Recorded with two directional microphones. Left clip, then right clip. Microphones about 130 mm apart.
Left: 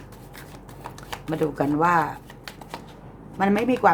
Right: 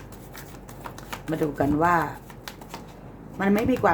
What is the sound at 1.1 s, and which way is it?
Shuffling cards, 25° left (ahead or behind).